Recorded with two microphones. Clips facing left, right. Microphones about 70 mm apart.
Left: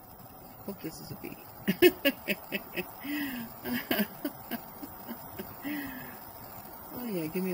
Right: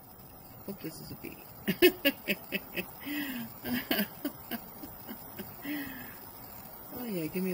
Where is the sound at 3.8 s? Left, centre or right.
Centre.